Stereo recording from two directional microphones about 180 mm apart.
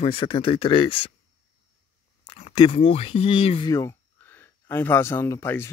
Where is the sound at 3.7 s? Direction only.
15° left (ahead or behind).